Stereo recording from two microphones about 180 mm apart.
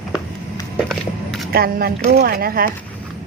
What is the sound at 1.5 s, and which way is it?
A woman's voice, 55° right (ahead or behind).